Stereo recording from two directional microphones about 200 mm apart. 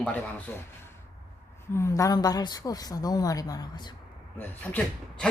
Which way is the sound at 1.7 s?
15° left (ahead or behind).